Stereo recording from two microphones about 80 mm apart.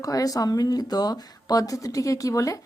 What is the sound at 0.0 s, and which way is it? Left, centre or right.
Speech, left.